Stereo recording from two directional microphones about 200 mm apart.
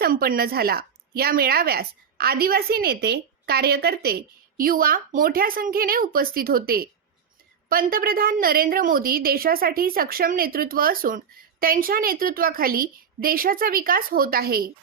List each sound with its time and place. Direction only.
0.0 s a woman's voice: 45° right (ahead or behind)